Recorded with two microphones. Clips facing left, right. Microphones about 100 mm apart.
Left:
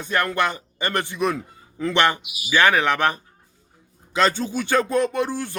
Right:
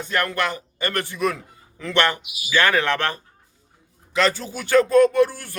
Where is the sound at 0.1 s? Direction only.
20° left (ahead or behind).